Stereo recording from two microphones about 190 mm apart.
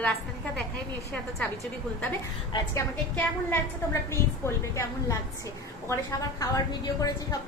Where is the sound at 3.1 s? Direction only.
10° left (ahead or behind).